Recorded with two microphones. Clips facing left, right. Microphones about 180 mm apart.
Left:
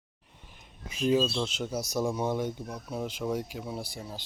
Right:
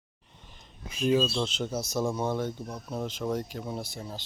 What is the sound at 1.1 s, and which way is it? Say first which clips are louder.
Speech: right 1 dB; 10° left (ahead or behind).